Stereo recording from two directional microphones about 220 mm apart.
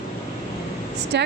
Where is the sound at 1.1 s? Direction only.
50° right (ahead or behind).